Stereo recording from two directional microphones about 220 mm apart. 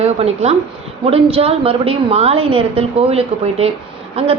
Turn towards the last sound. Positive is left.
turn(degrees=-25)  # may be behind; listen again after turning